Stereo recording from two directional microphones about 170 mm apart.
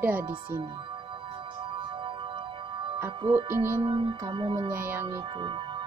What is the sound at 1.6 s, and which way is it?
Music, 30° right (ahead or behind).